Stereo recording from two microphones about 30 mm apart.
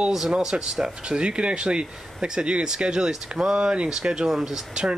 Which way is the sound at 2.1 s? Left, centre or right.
Right.